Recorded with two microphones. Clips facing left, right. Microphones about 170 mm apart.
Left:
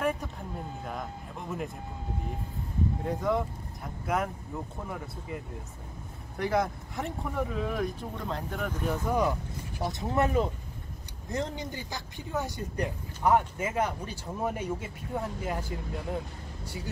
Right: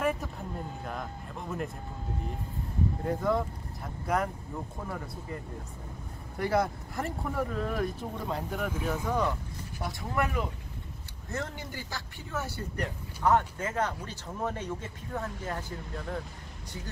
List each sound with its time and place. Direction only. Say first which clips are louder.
0.0 s speech: even; centre (ahead or behind)
3.0 s speech: right 1 dB; centre (ahead or behind)
9.0 s speech: left 4 dB; 10° left (ahead or behind); by 10.5 s 30° left (ahead or behind)
11.3 s speech: left 3 dB; 15° left (ahead or behind)